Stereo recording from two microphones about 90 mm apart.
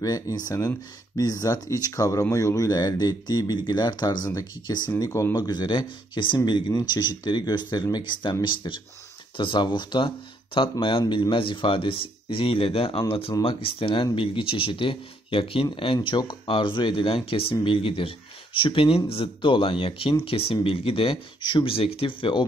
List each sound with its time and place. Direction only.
0.0 s speech: 45° left (ahead or behind)
5.0 s speech: 35° left (ahead or behind)
5.3 s speech: 50° left (ahead or behind); by 22.5 s 75° left (ahead or behind)